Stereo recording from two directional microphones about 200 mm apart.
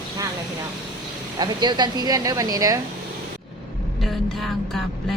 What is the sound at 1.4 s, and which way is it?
A woman's voice, 20° right (ahead or behind).